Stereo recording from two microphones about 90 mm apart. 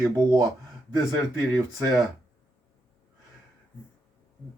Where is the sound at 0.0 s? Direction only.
45° right (ahead or behind).